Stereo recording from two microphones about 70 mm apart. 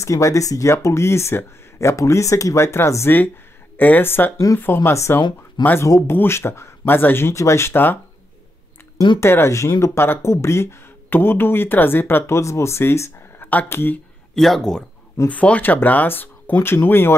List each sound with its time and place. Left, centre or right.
0.0 s speech: left
3.7 s speech: left
9.2 s speech: left
12.4 s speech: left
14.3 s speech: centre
15.2 s speech: left